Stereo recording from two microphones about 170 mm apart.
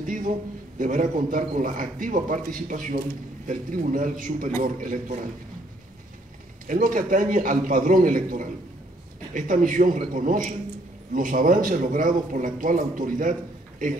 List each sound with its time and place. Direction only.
0.0 s a man's voice: 50° right (ahead or behind)
6.7 s a man's voice: 55° right (ahead or behind)